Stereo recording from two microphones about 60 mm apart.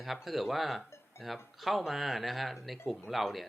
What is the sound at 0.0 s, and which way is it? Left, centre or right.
Speech, centre.